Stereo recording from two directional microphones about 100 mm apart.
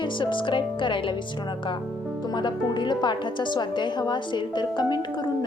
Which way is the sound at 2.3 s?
50° left (ahead or behind).